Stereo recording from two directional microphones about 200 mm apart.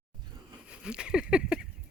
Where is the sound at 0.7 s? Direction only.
5° right (ahead or behind).